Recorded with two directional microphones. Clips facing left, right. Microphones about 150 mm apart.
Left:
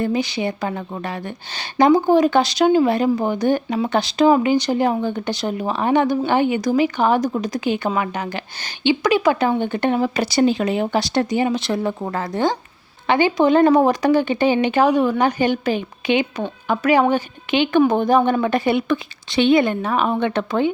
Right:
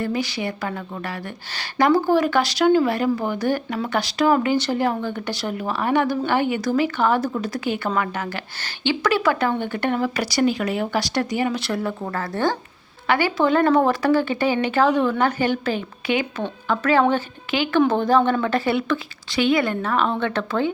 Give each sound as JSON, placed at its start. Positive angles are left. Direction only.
{"t": 0.0, "sound": "a woman's voice", "side_deg": 20}